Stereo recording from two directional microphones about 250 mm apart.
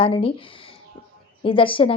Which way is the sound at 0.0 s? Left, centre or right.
Left.